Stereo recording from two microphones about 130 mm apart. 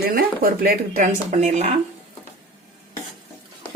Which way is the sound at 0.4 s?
90° right.